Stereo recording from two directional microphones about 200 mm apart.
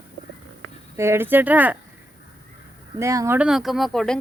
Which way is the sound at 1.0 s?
10° right (ahead or behind).